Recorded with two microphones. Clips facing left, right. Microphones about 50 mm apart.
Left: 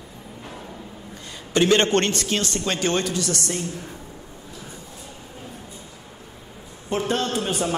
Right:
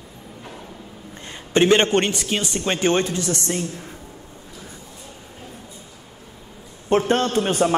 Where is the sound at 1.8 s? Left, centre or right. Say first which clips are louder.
Right 1 dB; centre.